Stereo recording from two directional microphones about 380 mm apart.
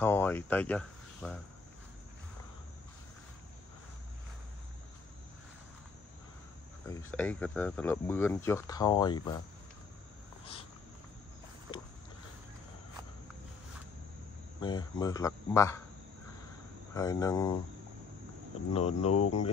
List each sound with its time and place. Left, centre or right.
0.0 s speech: centre
7.1 s speech: centre
14.6 s speech: centre
16.9 s speech: centre
18.7 s speech: centre
19.1 s speech: left